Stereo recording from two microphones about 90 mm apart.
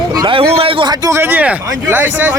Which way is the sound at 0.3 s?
80° right.